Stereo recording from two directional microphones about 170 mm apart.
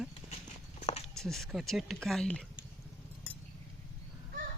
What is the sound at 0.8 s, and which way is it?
Walk, 40° left (ahead or behind).